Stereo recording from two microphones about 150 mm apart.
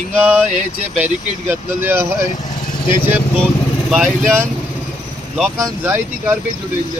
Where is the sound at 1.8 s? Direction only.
15° right (ahead or behind).